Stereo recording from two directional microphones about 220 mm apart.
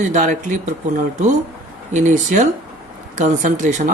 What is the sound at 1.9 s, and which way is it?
Speech, 35° right (ahead or behind).